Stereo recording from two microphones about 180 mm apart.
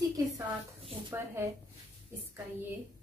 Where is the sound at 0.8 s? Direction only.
30° right (ahead or behind).